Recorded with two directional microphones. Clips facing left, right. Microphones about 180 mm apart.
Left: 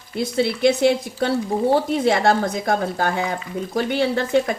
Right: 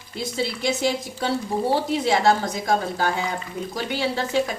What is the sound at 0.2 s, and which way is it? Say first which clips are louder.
Speech: left 8 dB; 60° left (ahead or behind).